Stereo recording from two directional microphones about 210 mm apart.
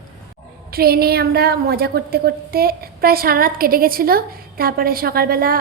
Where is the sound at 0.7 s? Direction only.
45° right (ahead or behind).